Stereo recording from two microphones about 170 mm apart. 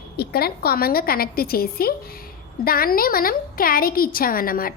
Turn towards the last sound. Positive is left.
turn(degrees=55)  # may be behind; listen again after turning